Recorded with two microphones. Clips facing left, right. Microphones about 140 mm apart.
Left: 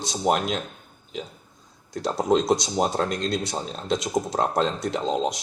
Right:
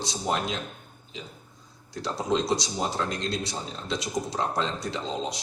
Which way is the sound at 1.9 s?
50° left (ahead or behind).